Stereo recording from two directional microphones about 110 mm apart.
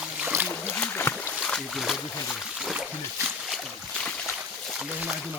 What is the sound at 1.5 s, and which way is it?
Boat, centre (ahead or behind).